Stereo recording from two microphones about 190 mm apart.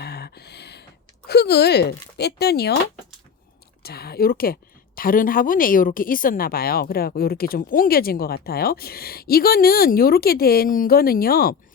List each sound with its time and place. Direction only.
0.0 s a sound: 60° left (ahead or behind)
1.3 s speech: 60° left (ahead or behind)
3.8 s speech: 55° left (ahead or behind)